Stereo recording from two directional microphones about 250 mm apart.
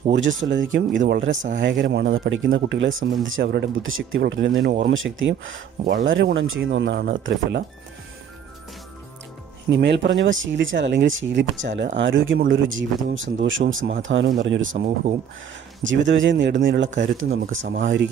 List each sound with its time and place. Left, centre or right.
0.1 s speech: right
9.7 s speech: right
15.8 s speech: right